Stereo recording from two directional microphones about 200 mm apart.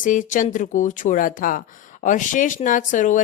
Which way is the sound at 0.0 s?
40° left (ahead or behind).